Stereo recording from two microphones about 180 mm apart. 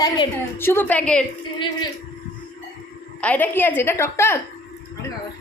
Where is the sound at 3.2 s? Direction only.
10° left (ahead or behind).